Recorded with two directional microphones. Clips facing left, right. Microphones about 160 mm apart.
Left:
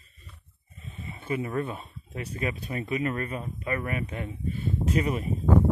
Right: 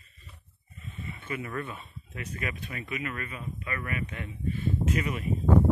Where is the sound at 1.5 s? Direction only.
30° left (ahead or behind).